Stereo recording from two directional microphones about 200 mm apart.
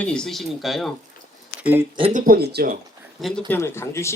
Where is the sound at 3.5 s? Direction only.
10° left (ahead or behind).